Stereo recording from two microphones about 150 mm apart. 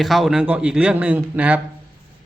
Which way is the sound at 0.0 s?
Centre (ahead or behind).